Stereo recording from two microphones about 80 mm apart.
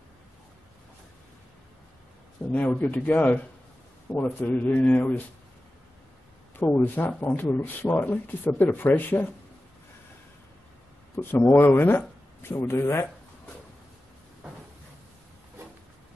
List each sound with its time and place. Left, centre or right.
2.5 s speech: left
6.7 s speech: left
11.1 s a man's voice: left